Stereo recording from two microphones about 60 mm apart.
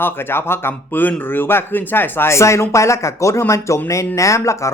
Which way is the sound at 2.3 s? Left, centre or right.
Left.